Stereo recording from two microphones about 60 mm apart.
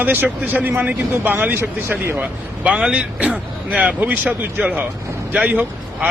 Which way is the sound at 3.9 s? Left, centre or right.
Right.